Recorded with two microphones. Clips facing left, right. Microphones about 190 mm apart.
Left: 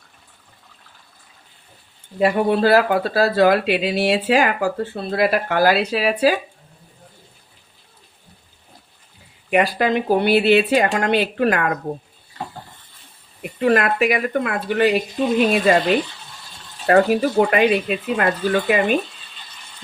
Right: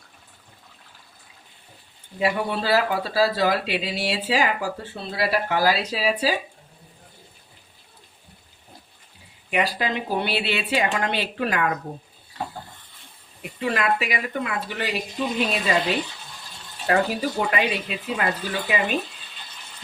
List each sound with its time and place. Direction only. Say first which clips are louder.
2.1 s speech: left 7 dB; 50° left (ahead or behind)
9.5 s speech: left 7 dB; 55° left (ahead or behind)
13.6 s speech: left 7 dB; 50° left (ahead or behind)
16.8 s speech: left 7 dB; 55° left (ahead or behind)